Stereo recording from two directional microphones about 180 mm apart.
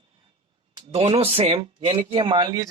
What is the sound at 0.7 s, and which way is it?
Speech, 30° right (ahead or behind).